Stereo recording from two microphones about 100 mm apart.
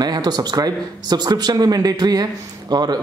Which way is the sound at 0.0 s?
45° right (ahead or behind).